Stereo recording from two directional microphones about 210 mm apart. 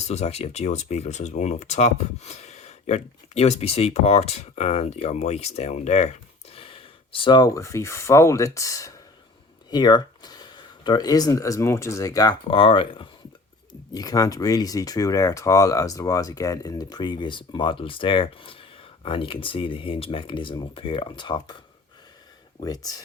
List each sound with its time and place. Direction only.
0.0 s speech: 30° left (ahead or behind)
22.6 s speech: 20° left (ahead or behind)